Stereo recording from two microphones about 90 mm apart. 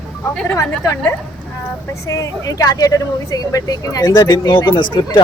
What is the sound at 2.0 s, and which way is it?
Speech, 40° left (ahead or behind).